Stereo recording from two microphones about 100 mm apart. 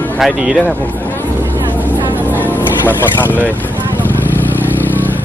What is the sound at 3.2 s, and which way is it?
Speech, 20° left (ahead or behind).